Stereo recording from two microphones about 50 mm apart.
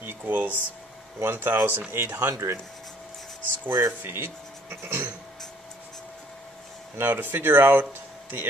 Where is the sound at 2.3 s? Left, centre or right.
Right.